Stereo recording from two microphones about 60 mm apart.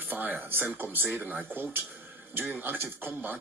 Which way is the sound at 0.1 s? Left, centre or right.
Right.